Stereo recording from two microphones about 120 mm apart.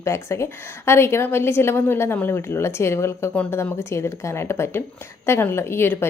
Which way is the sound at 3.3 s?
10° left (ahead or behind).